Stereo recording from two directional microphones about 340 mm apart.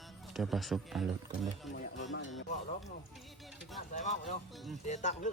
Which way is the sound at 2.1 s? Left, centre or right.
Left.